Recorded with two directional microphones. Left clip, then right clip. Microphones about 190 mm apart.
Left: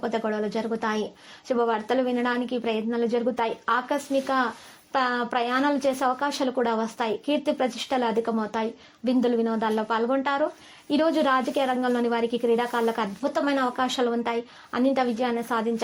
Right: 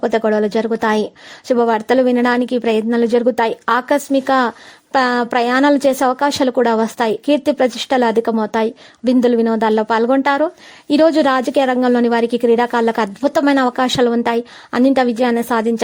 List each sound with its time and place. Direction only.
0.0 s a woman's voice: 45° right (ahead or behind)